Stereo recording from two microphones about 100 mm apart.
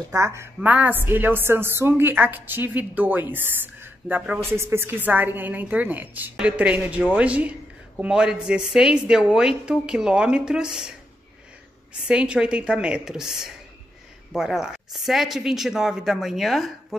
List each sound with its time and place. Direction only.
0.1 s a woman's voice: 30° right (ahead or behind)
0.6 s a woman's voice: 15° right (ahead or behind)
12.1 s a woman's voice: 10° right (ahead or behind)